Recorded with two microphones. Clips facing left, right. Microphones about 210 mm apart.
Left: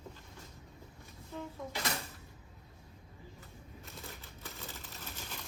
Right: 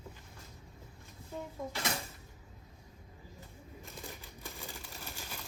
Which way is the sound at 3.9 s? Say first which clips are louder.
Right 1 dB; 15° right (ahead or behind).